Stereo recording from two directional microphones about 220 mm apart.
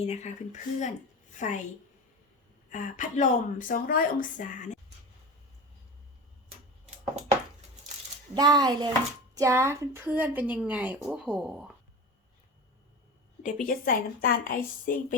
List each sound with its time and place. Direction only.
0.0 s speech: 30° left (ahead or behind)
2.6 s speech: 35° left (ahead or behind)
8.4 s a woman's voice: 15° right (ahead or behind)
13.4 s speech: 40° left (ahead or behind)